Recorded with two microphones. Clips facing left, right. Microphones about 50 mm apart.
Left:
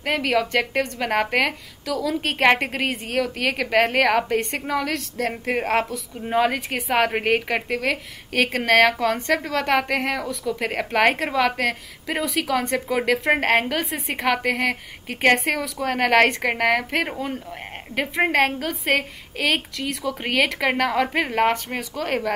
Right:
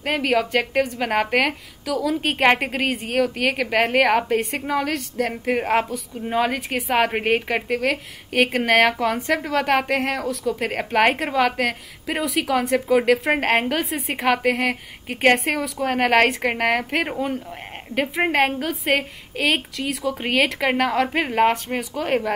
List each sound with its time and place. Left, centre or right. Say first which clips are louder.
0.0 s a woman's voice: right 1 dB; centre
5.7 s a woman's voice: right 1 dB; centre
6.2 s a woman's voice: left 1 dB; centre
9.4 s a woman's voice: right 2 dB; centre
9.7 s a woman's voice: left 1 dB; centre